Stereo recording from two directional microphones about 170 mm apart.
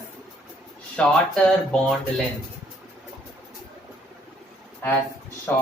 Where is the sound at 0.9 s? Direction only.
5° left (ahead or behind).